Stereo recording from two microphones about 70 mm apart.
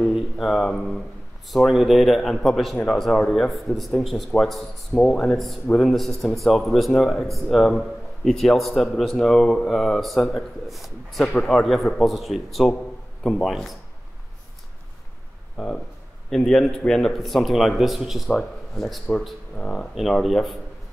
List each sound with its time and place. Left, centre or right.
0.1 s a man's voice: centre
5.0 s speech: centre
5.3 s a man's voice: centre
15.5 s a man's voice: centre
20.0 s a man's voice: centre